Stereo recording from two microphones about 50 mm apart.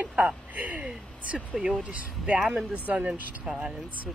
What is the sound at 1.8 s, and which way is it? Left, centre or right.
Speech, right.